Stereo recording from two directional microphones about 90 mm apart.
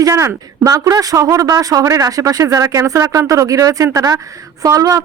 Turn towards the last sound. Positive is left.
turn(degrees=-40)  # may be behind; listen again after turning